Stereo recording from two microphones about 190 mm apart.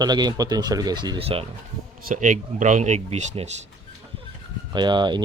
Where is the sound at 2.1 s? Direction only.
40° right (ahead or behind).